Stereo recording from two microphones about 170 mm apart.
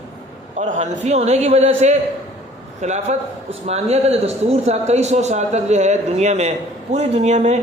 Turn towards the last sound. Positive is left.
turn(degrees=-40)  # may be behind; listen again after turning